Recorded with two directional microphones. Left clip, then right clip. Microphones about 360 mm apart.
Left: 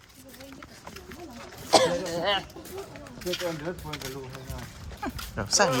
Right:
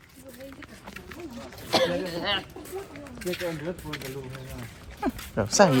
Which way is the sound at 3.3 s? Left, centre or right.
Centre.